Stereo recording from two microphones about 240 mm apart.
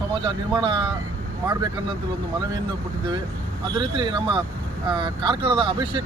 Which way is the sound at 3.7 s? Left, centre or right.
Centre.